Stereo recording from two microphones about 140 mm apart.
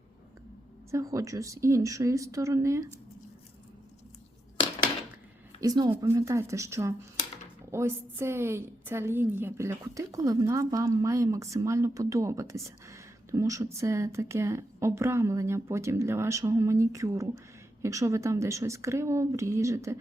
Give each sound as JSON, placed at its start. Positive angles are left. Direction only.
{"t": 0.9, "sound": "a woman's voice", "side_deg": -20}
{"t": 5.5, "sound": "a woman's voice", "side_deg": -25}